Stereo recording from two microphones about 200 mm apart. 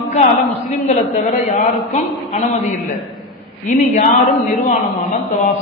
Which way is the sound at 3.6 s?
40° left (ahead or behind).